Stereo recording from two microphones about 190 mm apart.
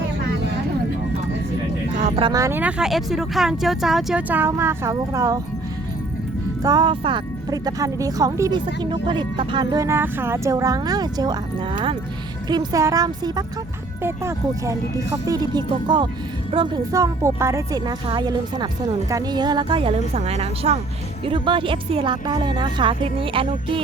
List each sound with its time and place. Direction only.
2.0 s vehicle: 40° right (ahead or behind)
2.2 s speech: 15° right (ahead or behind)
6.6 s speech: 20° right (ahead or behind)
12.5 s speech: 20° right (ahead or behind)